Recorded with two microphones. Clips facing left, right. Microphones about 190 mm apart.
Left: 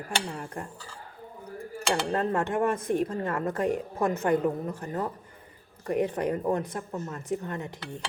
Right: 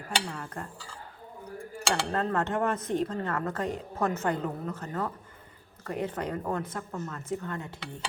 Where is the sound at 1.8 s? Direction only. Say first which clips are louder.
Left 2 dB; 20° left (ahead or behind).